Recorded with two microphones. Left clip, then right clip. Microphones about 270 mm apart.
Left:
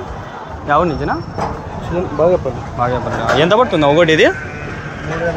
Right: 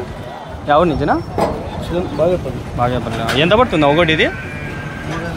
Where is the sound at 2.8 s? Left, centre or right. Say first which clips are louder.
Left 1 dB; centre.